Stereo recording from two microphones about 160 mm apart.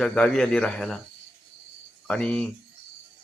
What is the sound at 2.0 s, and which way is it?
Speech, 5° left (ahead or behind).